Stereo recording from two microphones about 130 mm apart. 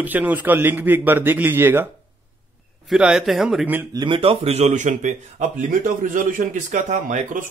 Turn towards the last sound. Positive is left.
turn(degrees=-80)